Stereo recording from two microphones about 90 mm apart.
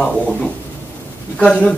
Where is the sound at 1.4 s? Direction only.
15° left (ahead or behind).